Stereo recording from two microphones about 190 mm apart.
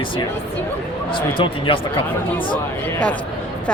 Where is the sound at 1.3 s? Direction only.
25° left (ahead or behind).